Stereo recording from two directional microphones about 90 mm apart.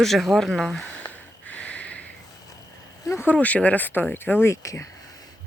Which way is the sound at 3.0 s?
30° left (ahead or behind).